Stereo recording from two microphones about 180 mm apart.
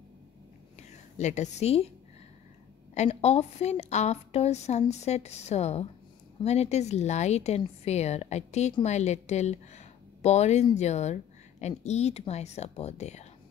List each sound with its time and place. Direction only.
0.7 s a woman's voice: 40° left (ahead or behind)
2.9 s a woman's voice: 40° left (ahead or behind)